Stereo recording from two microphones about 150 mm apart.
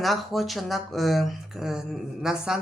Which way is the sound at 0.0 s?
Centre (ahead or behind).